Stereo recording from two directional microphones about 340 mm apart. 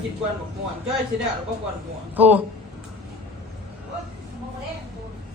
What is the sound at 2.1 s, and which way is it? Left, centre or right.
Speech, centre.